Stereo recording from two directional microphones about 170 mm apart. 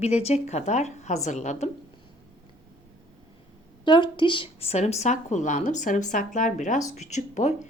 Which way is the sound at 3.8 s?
25° left (ahead or behind).